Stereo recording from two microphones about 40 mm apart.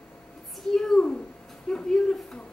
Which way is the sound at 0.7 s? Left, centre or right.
Centre.